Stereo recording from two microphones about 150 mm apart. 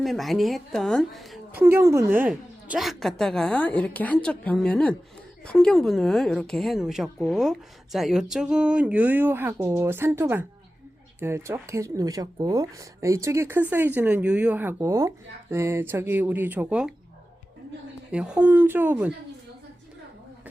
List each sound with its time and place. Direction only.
0.0 s a woman's voice: centre (ahead or behind)
1.5 s a woman's voice: 15° right (ahead or behind)
18.1 s speech: 5° right (ahead or behind)